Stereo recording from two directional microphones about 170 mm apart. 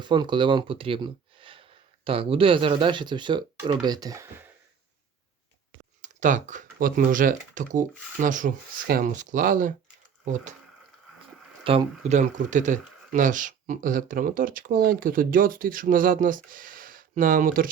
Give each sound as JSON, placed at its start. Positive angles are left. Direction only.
{"t": 0.0, "sound": "speech", "side_deg": -25}
{"t": 6.0, "sound": "speech", "side_deg": -45}
{"t": 11.6, "sound": "speech", "side_deg": -35}